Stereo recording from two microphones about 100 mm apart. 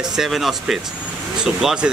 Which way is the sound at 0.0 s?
5° right (ahead or behind).